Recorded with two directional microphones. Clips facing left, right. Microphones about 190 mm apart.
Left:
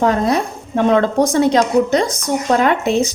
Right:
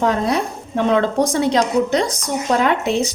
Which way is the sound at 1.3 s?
45° left (ahead or behind).